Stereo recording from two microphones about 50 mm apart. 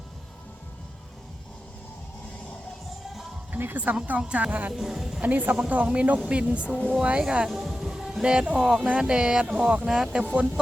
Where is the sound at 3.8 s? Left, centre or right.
Right.